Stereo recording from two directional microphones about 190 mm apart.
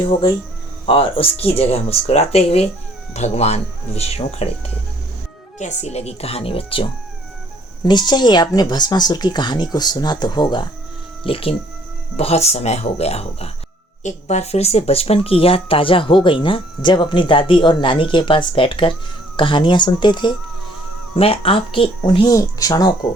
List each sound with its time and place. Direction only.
0.0 s speech: 25° left (ahead or behind)